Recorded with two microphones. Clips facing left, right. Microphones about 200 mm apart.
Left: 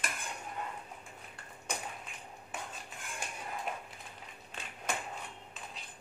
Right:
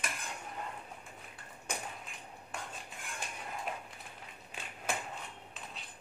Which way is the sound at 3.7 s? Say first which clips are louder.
Even; centre (ahead or behind).